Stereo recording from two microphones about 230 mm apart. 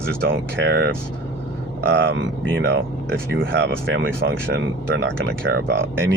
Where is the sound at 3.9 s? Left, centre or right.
Right.